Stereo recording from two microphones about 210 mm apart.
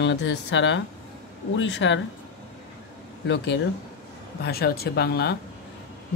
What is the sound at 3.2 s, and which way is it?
Speech, 60° left (ahead or behind).